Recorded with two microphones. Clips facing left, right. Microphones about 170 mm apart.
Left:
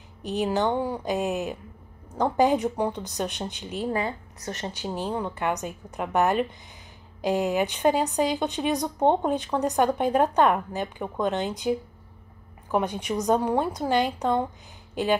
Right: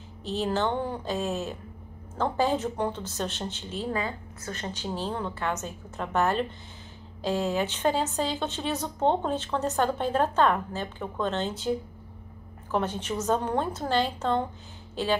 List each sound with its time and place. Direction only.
0.2 s a woman's voice: 15° left (ahead or behind)
12.7 s a woman's voice: 15° left (ahead or behind)